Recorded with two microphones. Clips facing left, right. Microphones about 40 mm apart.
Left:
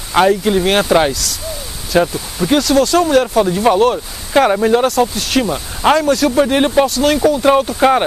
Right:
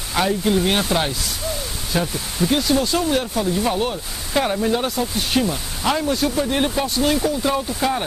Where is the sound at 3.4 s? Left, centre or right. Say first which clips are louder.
Left 7 dB; left.